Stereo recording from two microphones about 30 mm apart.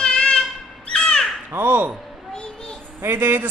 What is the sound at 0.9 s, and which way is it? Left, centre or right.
Crow, left.